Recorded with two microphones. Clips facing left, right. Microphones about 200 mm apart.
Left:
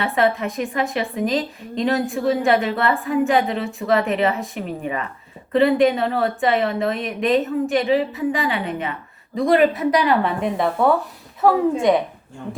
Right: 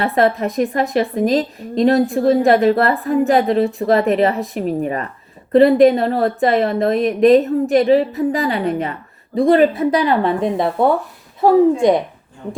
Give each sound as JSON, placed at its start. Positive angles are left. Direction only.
{"t": 0.0, "sound": "a woman's voice", "side_deg": -35}